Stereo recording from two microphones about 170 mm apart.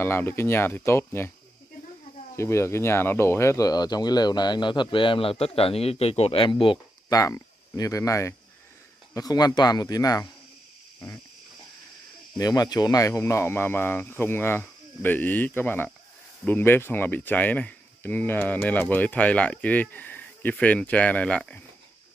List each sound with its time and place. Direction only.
0.0 s speech: 15° left (ahead or behind)
2.3 s speech: 15° left (ahead or behind)
12.4 s speech: 20° left (ahead or behind)